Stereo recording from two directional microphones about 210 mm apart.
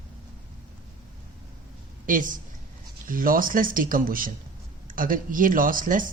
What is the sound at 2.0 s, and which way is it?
Speech, 40° right (ahead or behind).